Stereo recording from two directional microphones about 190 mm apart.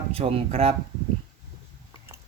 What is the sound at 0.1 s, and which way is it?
Speech, 30° right (ahead or behind).